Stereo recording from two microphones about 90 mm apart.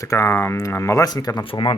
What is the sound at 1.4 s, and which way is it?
Speech, 60° left (ahead or behind).